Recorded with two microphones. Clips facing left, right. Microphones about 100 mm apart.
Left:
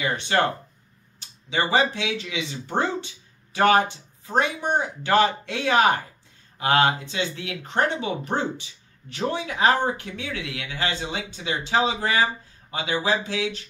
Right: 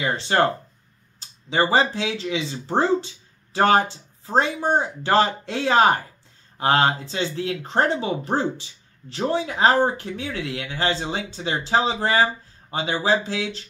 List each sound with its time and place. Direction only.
0.0 s speech: 30° right (ahead or behind)